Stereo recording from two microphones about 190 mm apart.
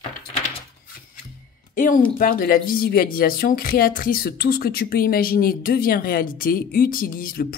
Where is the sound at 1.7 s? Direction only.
45° left (ahead or behind).